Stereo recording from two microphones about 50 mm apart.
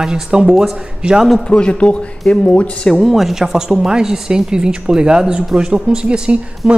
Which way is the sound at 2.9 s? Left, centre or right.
Centre.